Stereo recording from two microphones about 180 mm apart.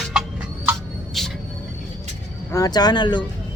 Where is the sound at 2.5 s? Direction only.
20° left (ahead or behind).